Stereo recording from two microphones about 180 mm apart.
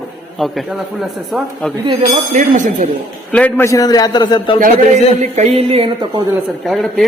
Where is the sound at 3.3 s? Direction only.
10° left (ahead or behind); by 4.6 s 25° left (ahead or behind).